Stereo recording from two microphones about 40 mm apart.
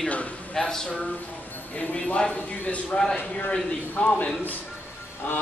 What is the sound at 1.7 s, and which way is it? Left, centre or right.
Speech, left.